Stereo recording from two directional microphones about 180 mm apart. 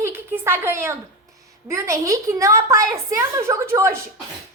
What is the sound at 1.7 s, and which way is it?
A woman's voice, 15° right (ahead or behind).